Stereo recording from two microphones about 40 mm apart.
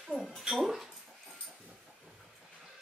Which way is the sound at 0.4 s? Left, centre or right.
Centre.